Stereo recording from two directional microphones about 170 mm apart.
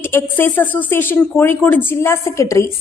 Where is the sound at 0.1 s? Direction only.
15° left (ahead or behind).